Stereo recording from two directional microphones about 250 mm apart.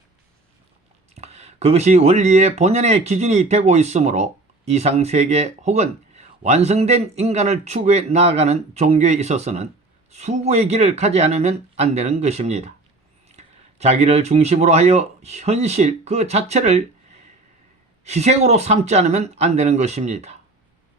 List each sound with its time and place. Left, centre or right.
1.1 s speech: right
18.0 s speech: right